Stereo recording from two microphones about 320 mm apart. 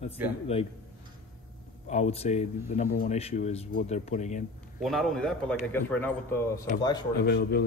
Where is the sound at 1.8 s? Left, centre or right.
Left.